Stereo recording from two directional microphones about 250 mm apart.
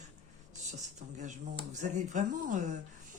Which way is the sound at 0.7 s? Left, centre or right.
Right.